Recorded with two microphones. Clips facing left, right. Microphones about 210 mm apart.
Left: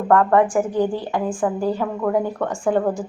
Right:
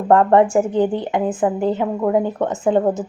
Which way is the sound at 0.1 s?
25° right (ahead or behind).